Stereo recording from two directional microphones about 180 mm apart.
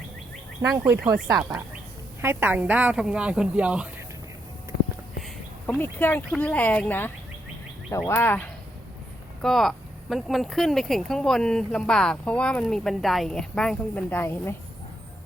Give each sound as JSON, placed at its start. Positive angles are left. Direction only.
{"t": 0.6, "sound": "a woman's voice", "side_deg": -20}
{"t": 5.6, "sound": "speech", "side_deg": 10}
{"t": 9.4, "sound": "speech", "side_deg": 0}